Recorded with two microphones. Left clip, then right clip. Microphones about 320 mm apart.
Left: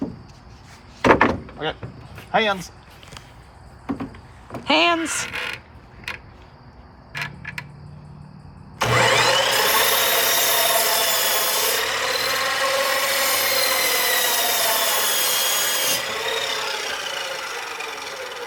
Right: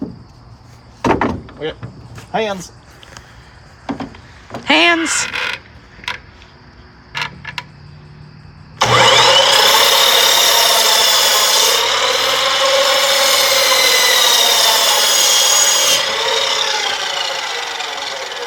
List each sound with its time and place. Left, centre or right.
2.3 s speech: centre
4.5 s speech: centre
8.8 s a sound: centre